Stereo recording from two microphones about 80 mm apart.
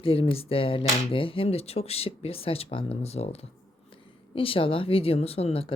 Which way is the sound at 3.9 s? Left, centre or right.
Left.